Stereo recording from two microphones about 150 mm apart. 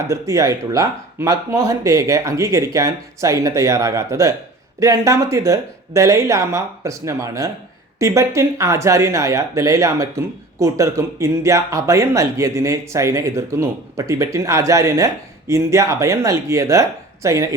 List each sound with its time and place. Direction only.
0.1 s speech: 20° right (ahead or behind)